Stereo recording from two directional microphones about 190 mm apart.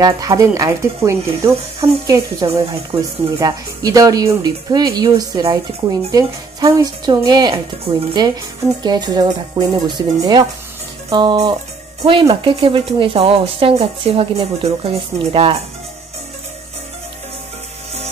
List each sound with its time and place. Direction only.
0.0 s speech: 20° right (ahead or behind)
2.6 s speech: 30° right (ahead or behind)
3.3 s speech: 20° right (ahead or behind)